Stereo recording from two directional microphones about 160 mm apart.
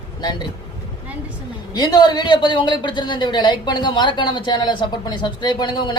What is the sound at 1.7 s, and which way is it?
A man's voice, 25° left (ahead or behind).